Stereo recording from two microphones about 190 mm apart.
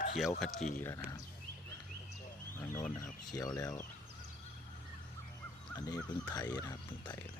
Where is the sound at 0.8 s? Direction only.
15° left (ahead or behind).